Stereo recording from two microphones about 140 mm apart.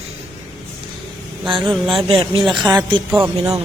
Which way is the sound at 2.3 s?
35° right (ahead or behind).